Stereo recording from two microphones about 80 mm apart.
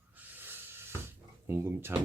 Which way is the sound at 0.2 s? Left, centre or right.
Right.